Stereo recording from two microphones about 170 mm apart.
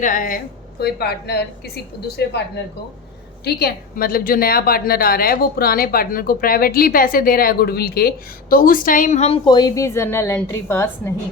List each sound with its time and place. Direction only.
0.0 s a woman's voice: 50° left (ahead or behind); by 2.4 s 75° left (ahead or behind)
3.4 s a woman's voice: 65° left (ahead or behind); by 11.1 s 15° left (ahead or behind)